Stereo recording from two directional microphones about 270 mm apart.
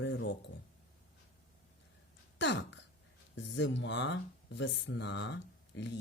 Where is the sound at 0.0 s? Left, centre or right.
Left.